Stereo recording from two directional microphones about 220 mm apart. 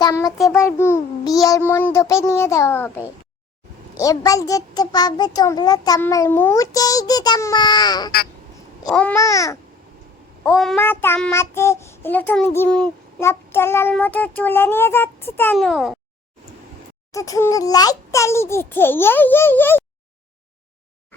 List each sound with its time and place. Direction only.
0.0 s child singing: 15° left (ahead or behind)
3.9 s child singing: 15° left (ahead or behind)
8.9 s child singing: 5° left (ahead or behind)
10.5 s child singing: centre (ahead or behind)
17.1 s child singing: 15° left (ahead or behind)